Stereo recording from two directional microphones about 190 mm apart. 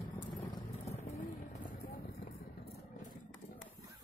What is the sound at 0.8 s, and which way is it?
Vehicle, 35° left (ahead or behind).